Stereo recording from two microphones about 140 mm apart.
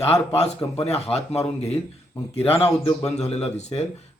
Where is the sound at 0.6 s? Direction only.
15° left (ahead or behind).